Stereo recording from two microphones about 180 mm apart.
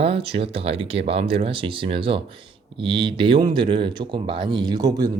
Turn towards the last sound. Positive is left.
turn(degrees=-20)  # may be behind; listen again after turning